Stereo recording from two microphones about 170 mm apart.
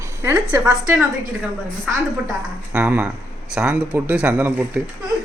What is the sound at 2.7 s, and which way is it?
A man's voice, 5° right (ahead or behind).